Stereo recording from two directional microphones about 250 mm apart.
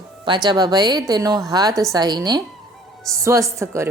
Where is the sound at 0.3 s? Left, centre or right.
Centre.